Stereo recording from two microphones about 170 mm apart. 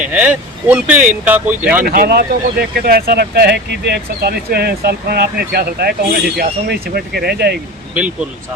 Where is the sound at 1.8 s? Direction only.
55° right (ahead or behind).